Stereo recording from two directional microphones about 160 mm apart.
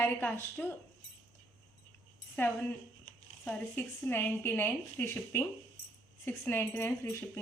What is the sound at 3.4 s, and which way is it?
Speech, 10° left (ahead or behind).